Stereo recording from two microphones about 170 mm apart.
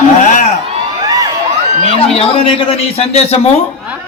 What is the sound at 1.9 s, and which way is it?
A man's voice, 35° left (ahead or behind).